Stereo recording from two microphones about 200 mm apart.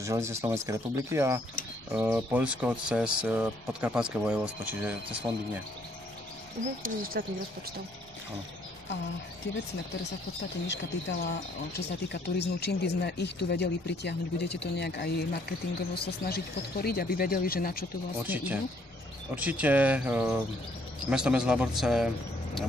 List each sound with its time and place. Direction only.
0.0 s speech: 15° right (ahead or behind)
6.8 s speech: 45° right (ahead or behind)
10.7 s speech: 60° left (ahead or behind)
18.2 s speech: 10° right (ahead or behind)